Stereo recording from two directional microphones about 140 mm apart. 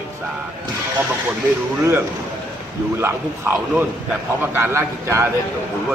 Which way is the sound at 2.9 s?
15° right (ahead or behind).